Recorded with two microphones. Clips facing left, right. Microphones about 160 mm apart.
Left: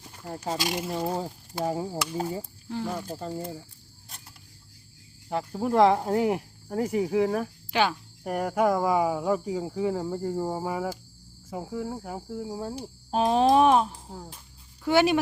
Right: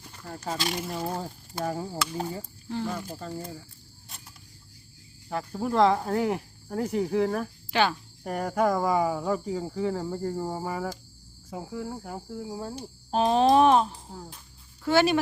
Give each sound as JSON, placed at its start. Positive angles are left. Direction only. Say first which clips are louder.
{"t": 0.2, "sound": "speech", "louder": "left 2 dB", "side_deg": 20}
{"t": 0.9, "sound": "speech", "louder": "left 3 dB", "side_deg": 0}
{"t": 1.6, "sound": "speech", "louder": "left 2 dB", "side_deg": 20}
{"t": 2.1, "sound": "speech", "louder": "left 2 dB", "side_deg": 5}
{"t": 3.2, "sound": "speech", "louder": "left 3 dB", "side_deg": 20}
{"t": 5.5, "sound": "speech", "louder": "left 2 dB", "side_deg": 15}